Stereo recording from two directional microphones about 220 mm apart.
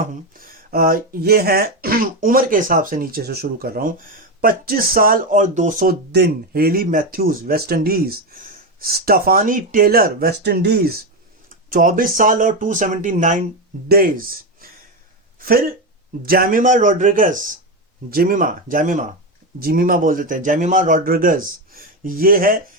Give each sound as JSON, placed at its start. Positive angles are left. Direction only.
{"t": 0.0, "sound": "speech", "side_deg": -40}
{"t": 14.6, "sound": "a sound", "side_deg": -40}
{"t": 15.4, "sound": "speech", "side_deg": -40}